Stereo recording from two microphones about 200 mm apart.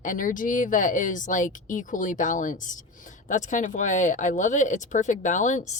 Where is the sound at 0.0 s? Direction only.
40° left (ahead or behind).